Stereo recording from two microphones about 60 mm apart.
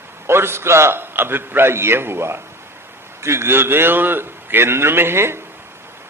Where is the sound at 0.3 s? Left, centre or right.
Right.